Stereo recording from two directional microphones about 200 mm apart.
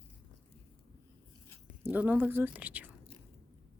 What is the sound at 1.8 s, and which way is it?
Speech, 10° right (ahead or behind).